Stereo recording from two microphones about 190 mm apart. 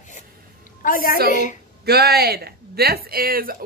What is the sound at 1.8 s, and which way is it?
Speech, 55° right (ahead or behind).